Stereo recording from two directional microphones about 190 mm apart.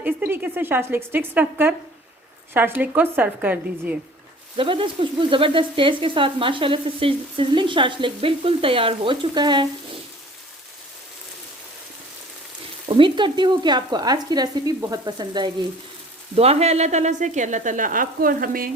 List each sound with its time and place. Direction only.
0.0 s a woman's voice: 10° right (ahead or behind)
4.5 s sizzle: 30° right (ahead or behind)
12.9 s sizzle: 25° right (ahead or behind)
16.3 s speech: 35° right (ahead or behind); by 18.7 s 50° right (ahead or behind)